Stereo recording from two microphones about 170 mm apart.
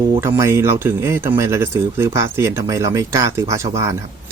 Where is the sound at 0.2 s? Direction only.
15° right (ahead or behind).